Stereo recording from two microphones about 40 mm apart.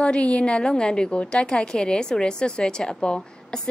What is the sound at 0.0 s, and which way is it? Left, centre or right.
A woman's voice, left.